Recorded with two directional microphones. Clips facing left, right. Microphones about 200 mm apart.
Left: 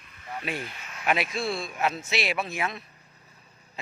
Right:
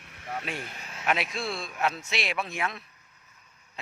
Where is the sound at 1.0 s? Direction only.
5° left (ahead or behind).